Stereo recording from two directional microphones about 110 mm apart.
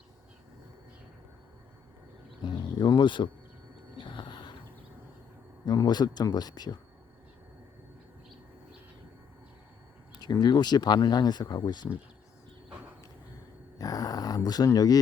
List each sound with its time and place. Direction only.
2.4 s insect: 40° left (ahead or behind)
3.9 s a sound: 45° left (ahead or behind)
5.6 s speech: 40° left (ahead or behind)
10.2 s speech: 40° left (ahead or behind)
13.7 s speech: 35° left (ahead or behind)